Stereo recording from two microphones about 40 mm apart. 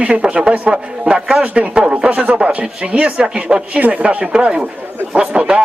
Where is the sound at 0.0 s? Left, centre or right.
Right.